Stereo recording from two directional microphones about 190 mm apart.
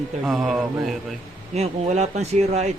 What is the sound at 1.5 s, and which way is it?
Speech, 35° right (ahead or behind).